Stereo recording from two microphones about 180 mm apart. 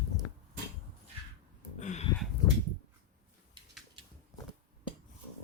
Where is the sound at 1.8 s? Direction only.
40° left (ahead or behind).